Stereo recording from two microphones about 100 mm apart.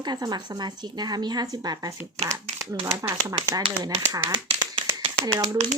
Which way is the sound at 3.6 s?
50° right (ahead or behind).